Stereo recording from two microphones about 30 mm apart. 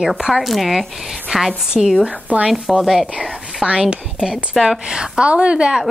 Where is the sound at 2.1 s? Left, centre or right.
Right.